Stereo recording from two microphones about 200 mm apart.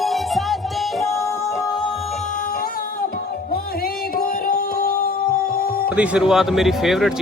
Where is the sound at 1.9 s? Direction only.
30° left (ahead or behind); by 5.8 s 50° left (ahead or behind).